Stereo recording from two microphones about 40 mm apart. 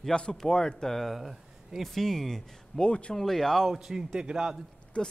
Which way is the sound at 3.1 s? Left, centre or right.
Centre.